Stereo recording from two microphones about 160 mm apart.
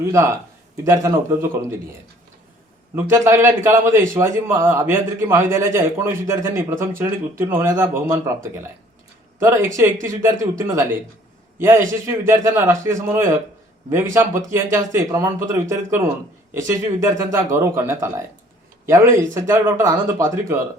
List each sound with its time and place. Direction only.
0.0 s a man's voice: 20° right (ahead or behind)
2.9 s a man's voice: 15° right (ahead or behind)
9.4 s a man's voice: 20° right (ahead or behind)
16.6 s a man's voice: 15° right (ahead or behind)